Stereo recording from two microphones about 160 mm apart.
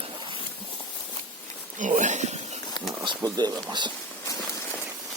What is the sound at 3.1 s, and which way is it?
Speech, 25° right (ahead or behind).